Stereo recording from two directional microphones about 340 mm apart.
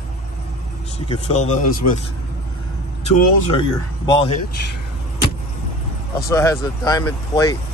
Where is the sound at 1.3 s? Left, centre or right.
Centre.